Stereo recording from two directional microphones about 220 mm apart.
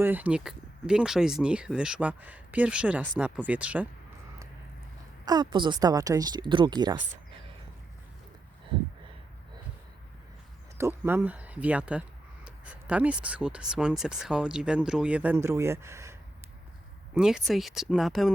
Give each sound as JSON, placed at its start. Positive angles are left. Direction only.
{"t": 0.0, "sound": "speech", "side_deg": -10}
{"t": 5.2, "sound": "speech", "side_deg": -20}
{"t": 10.8, "sound": "speech", "side_deg": -10}
{"t": 17.2, "sound": "speech", "side_deg": -5}